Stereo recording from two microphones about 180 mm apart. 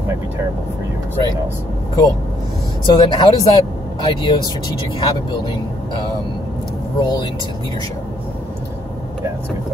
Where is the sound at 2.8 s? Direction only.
25° left (ahead or behind).